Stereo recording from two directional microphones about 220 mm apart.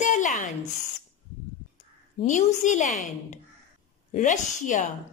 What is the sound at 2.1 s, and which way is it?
Speech, 35° left (ahead or behind).